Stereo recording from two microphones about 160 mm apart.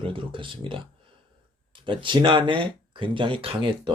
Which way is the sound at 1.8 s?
30° right (ahead or behind).